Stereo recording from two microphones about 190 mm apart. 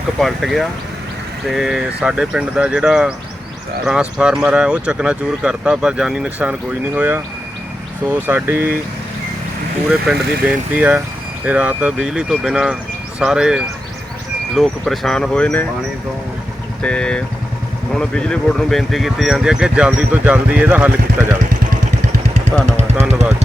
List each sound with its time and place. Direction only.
0.2 s speech: centre (ahead or behind)
10.4 s speech: 5° right (ahead or behind)
16.8 s speech: 5° left (ahead or behind)
22.6 s vehicle: 35° right (ahead or behind)